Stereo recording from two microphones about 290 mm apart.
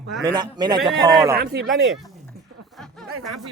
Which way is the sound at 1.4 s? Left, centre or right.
Right.